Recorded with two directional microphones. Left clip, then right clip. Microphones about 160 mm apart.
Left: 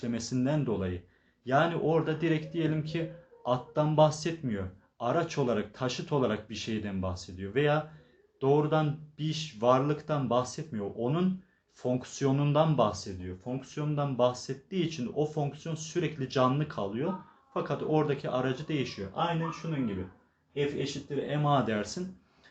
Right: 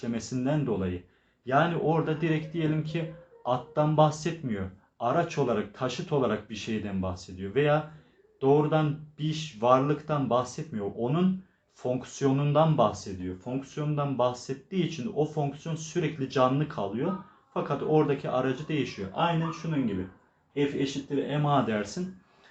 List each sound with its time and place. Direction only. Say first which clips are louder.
0.0 s speech: right 1 dB; 30° left (ahead or behind)
21.2 s speech: right 1 dB; 35° left (ahead or behind)